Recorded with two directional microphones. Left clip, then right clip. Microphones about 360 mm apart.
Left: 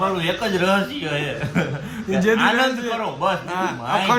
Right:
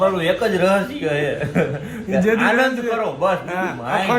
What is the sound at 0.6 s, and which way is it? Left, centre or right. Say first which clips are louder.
A man's voice: right 3 dB; centre.